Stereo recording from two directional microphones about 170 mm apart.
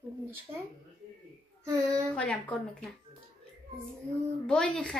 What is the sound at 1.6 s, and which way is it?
Speech, 20° right (ahead or behind).